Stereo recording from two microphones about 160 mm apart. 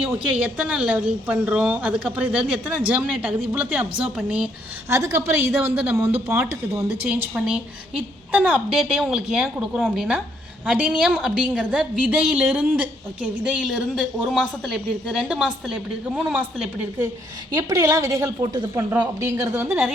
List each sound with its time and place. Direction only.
0.1 s speech: 5° right (ahead or behind)
4.9 s a woman's voice: 20° right (ahead or behind)
17.5 s a woman's voice: 20° right (ahead or behind)